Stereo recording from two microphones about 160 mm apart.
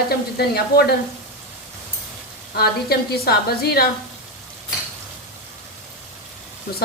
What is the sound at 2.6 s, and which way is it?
A woman's voice, 75° left (ahead or behind).